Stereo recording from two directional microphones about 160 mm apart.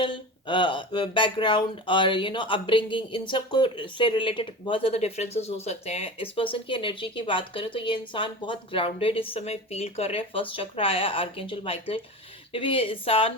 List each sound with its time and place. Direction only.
0.0 s speech: 30° left (ahead or behind)